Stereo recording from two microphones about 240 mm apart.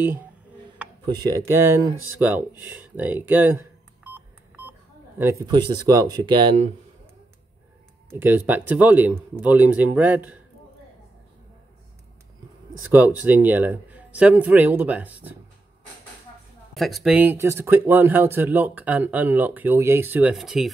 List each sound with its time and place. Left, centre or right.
1.0 s speech: centre
5.2 s speech: centre
8.1 s speech: centre
12.9 s speech: centre
16.7 s speech: centre